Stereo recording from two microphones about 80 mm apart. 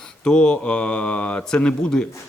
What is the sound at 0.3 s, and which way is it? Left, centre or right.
Speech, centre.